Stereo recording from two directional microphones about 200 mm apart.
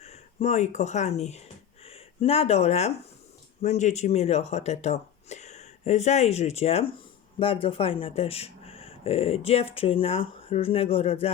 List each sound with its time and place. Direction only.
0.0 s speech: 30° left (ahead or behind)